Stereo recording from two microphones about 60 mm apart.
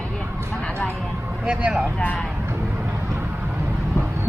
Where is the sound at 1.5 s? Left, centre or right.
Centre.